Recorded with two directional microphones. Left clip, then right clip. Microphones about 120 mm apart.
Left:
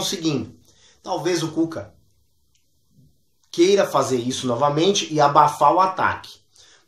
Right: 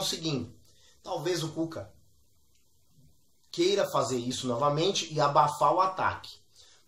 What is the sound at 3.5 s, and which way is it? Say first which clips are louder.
Speech: left 10 dB; 15° left (ahead or behind).